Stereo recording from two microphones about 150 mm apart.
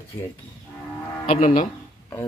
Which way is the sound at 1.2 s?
55° left (ahead or behind).